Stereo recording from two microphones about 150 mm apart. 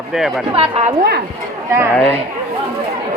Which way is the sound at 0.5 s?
40° right (ahead or behind).